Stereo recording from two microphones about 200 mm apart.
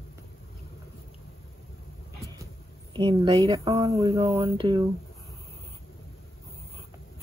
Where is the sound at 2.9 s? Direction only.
25° right (ahead or behind).